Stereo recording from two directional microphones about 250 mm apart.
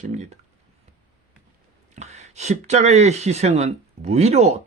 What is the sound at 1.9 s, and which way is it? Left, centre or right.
Speech, right.